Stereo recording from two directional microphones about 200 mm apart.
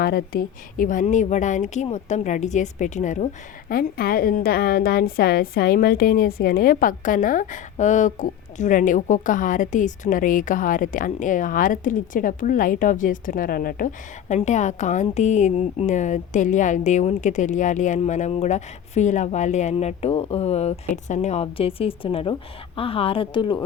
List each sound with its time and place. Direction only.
0.0 s a woman's voice: 50° left (ahead or behind)
3.7 s a woman's voice: 50° left (ahead or behind); by 23.6 s 25° left (ahead or behind)